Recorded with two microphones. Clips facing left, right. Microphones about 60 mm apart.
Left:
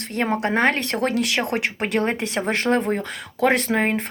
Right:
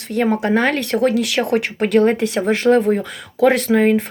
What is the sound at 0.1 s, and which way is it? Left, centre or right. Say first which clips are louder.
Speech: right 5 dB; left.